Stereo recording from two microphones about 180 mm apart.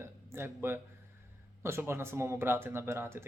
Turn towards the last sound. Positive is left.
turn(degrees=-15)  # may be behind; listen again after turning